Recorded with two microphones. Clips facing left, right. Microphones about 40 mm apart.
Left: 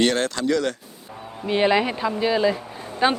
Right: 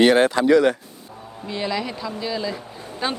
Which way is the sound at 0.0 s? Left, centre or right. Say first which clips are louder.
Right 6 dB; centre.